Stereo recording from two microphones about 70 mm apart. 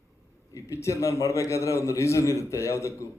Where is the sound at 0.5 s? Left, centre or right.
Left.